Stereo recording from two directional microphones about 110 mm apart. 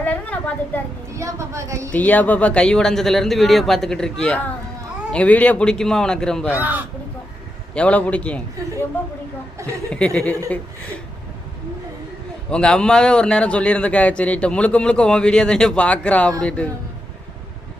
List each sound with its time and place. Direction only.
0.0 s a sound: 15° left (ahead or behind)
1.1 s a woman's voice: 30° right (ahead or behind)
1.9 s a man's voice: 15° left (ahead or behind)
6.6 s speech: 15° right (ahead or behind)
7.7 s a man's voice: 10° left (ahead or behind)
9.9 s a man's voice: 10° left (ahead or behind)
12.5 s a man's voice: 10° left (ahead or behind)